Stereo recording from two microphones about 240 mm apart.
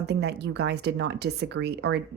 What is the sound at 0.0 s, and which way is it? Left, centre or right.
Speech, right.